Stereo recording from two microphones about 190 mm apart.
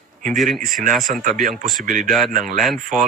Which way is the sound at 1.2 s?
45° right (ahead or behind).